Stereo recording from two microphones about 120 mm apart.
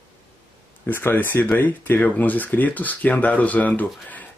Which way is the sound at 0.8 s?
15° left (ahead or behind).